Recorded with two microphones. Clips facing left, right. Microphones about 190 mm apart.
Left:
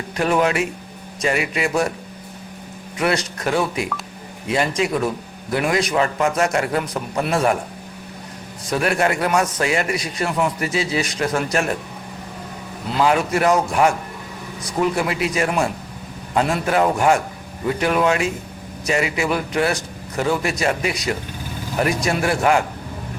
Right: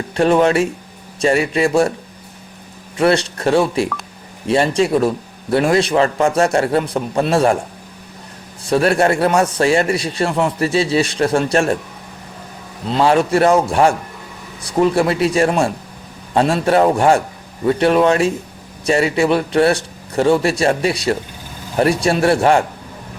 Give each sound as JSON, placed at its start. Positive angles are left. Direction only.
{"t": 0.2, "sound": "a man's voice", "side_deg": -30}
{"t": 3.0, "sound": "a man's voice", "side_deg": -30}
{"t": 8.6, "sound": "a man's voice", "side_deg": -30}
{"t": 12.9, "sound": "a man's voice", "side_deg": -30}